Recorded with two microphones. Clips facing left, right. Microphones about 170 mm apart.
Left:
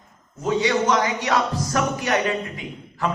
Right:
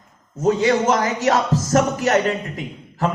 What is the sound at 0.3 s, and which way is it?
A man's voice, 40° right (ahead or behind).